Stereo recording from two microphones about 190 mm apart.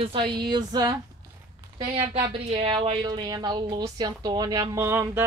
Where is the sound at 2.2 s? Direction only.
25° right (ahead or behind).